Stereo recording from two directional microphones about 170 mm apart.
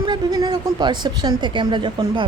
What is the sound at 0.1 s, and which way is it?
A woman's voice, 25° right (ahead or behind).